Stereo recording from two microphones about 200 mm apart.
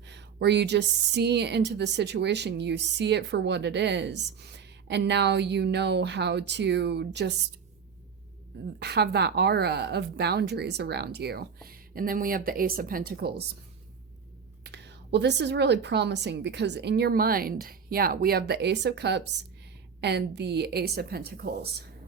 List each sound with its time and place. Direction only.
0.0 s a woman's voice: 60° right (ahead or behind)
8.8 s a woman's voice: 55° right (ahead or behind)
14.6 s a woman's voice: 60° right (ahead or behind)